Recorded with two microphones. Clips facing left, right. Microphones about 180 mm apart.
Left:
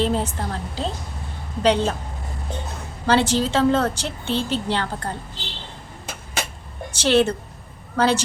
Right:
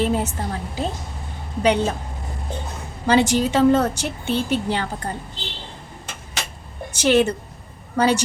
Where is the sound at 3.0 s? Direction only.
10° right (ahead or behind).